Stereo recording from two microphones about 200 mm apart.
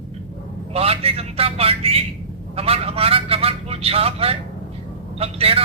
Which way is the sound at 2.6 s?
30° right (ahead or behind).